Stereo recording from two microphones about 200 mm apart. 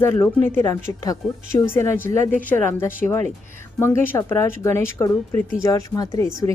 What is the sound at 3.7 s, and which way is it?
A woman's voice, 10° left (ahead or behind).